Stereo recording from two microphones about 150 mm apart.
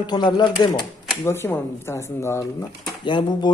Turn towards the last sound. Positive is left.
turn(degrees=30)  # may be behind; listen again after turning